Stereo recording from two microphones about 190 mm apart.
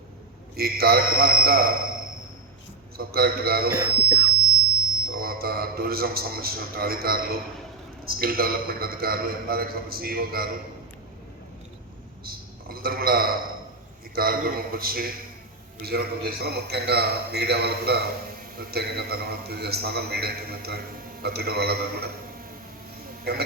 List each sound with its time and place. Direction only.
0.5 s a man's voice: 55° right (ahead or behind)
3.0 s a man's voice: 55° right (ahead or behind)
3.7 s speech: 15° right (ahead or behind)
5.0 s a man's voice: 50° right (ahead or behind)
12.2 s a sound: 50° right (ahead or behind)
14.2 s a man's voice: 50° right (ahead or behind)
23.3 s a man's voice: 55° right (ahead or behind)